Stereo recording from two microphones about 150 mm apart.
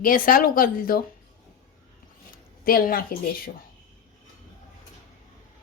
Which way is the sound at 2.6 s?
75° left (ahead or behind).